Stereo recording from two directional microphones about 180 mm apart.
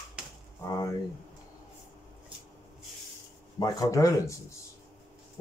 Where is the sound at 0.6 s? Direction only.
15° left (ahead or behind).